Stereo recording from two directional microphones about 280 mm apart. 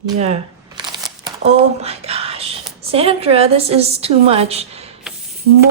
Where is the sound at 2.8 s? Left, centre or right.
Right.